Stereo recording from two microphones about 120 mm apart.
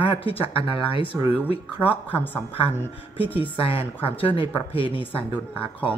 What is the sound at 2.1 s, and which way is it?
Speech, 15° left (ahead or behind).